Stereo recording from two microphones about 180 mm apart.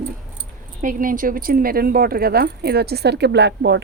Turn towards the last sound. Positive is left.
turn(degrees=-70)  # may be behind; listen again after turning